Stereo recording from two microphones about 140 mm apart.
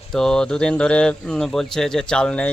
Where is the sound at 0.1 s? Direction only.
5° left (ahead or behind).